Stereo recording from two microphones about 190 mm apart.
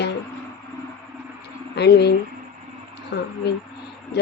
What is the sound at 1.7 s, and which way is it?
Speech, 60° left (ahead or behind).